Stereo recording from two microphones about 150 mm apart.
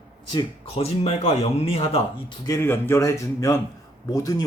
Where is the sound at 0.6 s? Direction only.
40° left (ahead or behind).